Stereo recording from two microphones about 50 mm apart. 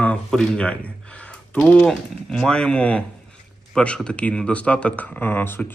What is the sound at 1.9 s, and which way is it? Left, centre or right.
Speech, centre.